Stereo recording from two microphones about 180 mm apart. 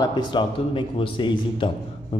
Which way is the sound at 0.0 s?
25° left (ahead or behind).